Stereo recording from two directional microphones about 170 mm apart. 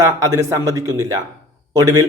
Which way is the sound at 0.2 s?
20° right (ahead or behind).